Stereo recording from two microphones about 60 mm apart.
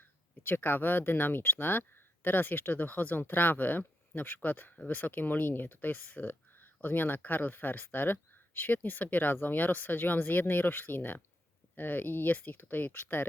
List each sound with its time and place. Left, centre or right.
0.4 s speech: left